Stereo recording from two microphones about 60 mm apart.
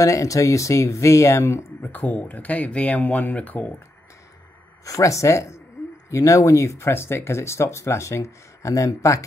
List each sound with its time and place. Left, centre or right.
0.0 s speech: left
1.8 s speech: left
4.8 s speech: left
6.0 s speech: left